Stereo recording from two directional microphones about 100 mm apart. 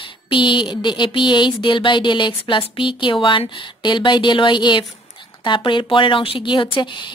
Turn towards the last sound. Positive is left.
turn(degrees=55)  # may be behind; listen again after turning